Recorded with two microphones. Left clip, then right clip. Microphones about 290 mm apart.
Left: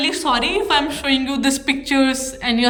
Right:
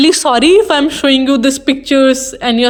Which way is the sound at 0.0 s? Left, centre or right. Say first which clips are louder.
Right 9 dB; centre.